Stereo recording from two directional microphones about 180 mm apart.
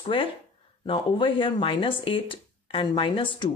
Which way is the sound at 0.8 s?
30° left (ahead or behind).